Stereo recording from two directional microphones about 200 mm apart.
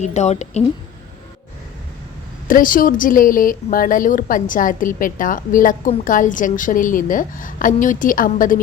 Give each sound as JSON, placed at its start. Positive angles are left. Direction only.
{"t": 0.0, "sound": "a woman's voice", "side_deg": 35}
{"t": 2.5, "sound": "a woman's voice", "side_deg": 45}